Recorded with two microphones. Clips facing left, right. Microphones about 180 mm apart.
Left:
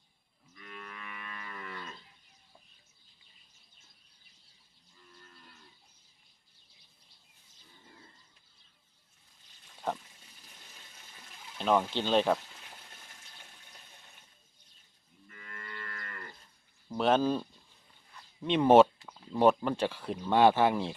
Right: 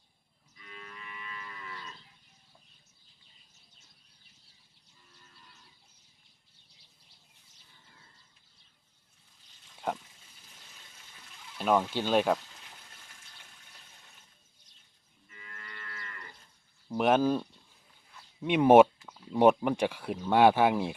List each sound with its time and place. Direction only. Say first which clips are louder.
0.5 s moo: left 2 dB; 60° left (ahead or behind)
11.5 s speech: right 1 dB; 5° right (ahead or behind)
15.3 s moo: left 3 dB; 55° left (ahead or behind)
16.9 s speech: right 2 dB; 10° right (ahead or behind)